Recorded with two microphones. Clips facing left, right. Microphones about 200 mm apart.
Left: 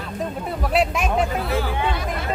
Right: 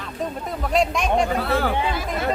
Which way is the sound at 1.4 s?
60° right (ahead or behind).